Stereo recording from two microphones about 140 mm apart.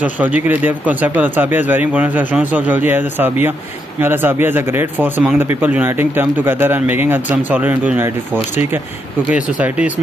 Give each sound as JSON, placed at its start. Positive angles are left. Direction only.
{"t": 0.0, "sound": "speech", "side_deg": -10}
{"t": 9.6, "sound": "speech", "side_deg": -10}